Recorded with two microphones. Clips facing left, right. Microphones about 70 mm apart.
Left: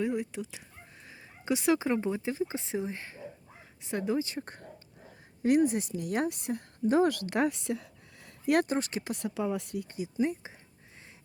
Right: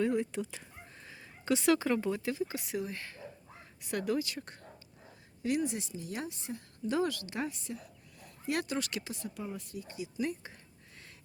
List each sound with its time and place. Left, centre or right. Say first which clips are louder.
0.0 s horse: right 1 dB; centre
1.1 s speech: even; centre
5.4 s a woman's voice: left 7 dB; left
6.8 s a woman's voice: left 7 dB; left
8.4 s speech: left 7 dB; left
9.0 s speech: left 7 dB; left
9.3 s speech: left 9 dB; left
9.9 s speech: left 6 dB; left
10.4 s speech: left 2 dB; centre